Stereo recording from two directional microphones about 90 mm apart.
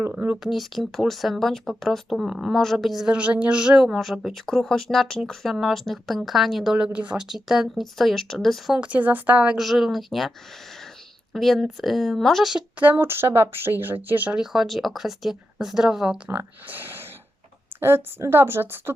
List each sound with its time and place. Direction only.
0.4 s speech: centre (ahead or behind)
8.8 s speech: 15° right (ahead or behind)
9.6 s speech: centre (ahead or behind)
11.3 s speech: centre (ahead or behind)
12.8 s speech: 25° right (ahead or behind)
14.3 s speech: 5° right (ahead or behind)
16.3 s speech: 20° right (ahead or behind)